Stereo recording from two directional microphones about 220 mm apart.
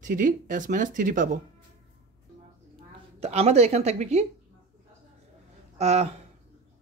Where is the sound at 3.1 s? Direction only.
30° right (ahead or behind).